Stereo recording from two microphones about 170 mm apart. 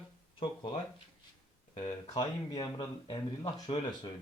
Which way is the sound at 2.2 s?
25° left (ahead or behind).